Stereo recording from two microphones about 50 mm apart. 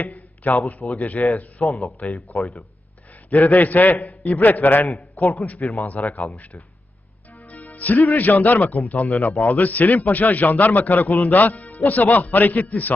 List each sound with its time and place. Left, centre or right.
0.0 s a sound: left
0.7 s a man's voice: left
2.1 s speech: centre
3.2 s a man's voice: left
7.5 s a man's voice: left